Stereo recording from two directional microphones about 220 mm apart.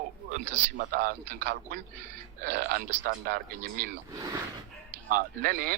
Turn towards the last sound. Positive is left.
turn(degrees=-40)  # may be behind; listen again after turning